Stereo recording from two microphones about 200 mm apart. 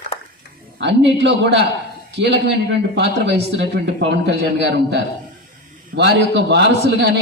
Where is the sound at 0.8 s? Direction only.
65° right (ahead or behind).